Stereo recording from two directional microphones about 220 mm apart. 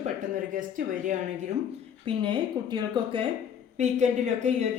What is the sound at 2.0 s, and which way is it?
Speech, 20° right (ahead or behind).